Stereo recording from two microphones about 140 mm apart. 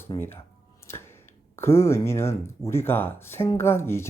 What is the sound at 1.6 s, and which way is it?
Speech, 20° left (ahead or behind).